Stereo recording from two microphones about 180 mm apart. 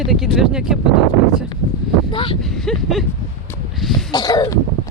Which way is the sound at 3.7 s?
Centre (ahead or behind).